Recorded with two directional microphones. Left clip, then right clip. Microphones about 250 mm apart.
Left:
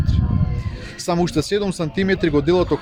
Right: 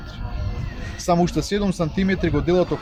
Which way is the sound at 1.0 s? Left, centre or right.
Left.